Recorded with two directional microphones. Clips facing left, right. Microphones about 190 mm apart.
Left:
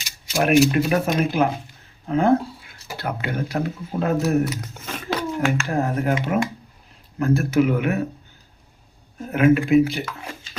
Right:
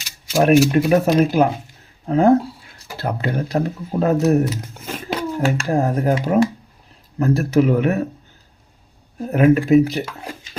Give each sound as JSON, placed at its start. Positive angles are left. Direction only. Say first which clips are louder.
{"t": 0.3, "sound": "speech", "louder": "right 3 dB", "side_deg": -40}
{"t": 9.1, "sound": "speech", "louder": "right 2 dB", "side_deg": -35}